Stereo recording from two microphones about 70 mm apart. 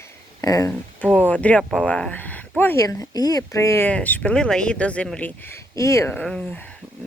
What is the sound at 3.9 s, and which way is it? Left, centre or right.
Speech, left.